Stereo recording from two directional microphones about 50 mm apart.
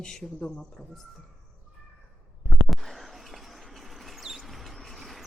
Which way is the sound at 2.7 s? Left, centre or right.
Centre.